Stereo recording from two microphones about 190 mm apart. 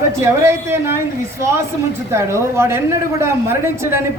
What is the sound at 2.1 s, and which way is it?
Speech, 15° right (ahead or behind).